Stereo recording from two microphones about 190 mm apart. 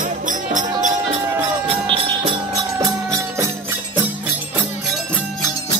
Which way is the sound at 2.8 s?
20° right (ahead or behind).